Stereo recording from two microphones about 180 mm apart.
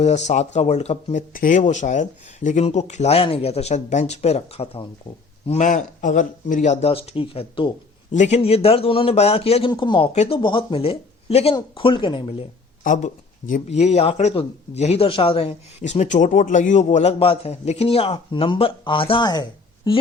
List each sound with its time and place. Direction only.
0.0 s speech: 40° left (ahead or behind)
1.3 s speech: 50° left (ahead or behind); by 4.9 s 35° left (ahead or behind)
5.5 s speech: 45° left (ahead or behind)
8.1 s speech: 40° left (ahead or behind)
12.8 s speech: 45° left (ahead or behind); by 20.0 s 25° left (ahead or behind)